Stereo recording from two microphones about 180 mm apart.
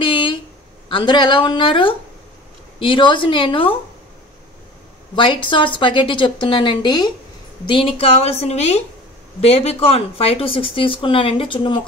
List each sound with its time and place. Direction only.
0.0 s a sound: 30° left (ahead or behind)
0.8 s a woman's voice: 25° left (ahead or behind)
5.1 s a woman's voice: 25° left (ahead or behind)